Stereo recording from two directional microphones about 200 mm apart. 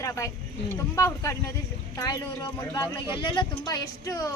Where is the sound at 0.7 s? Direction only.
15° left (ahead or behind).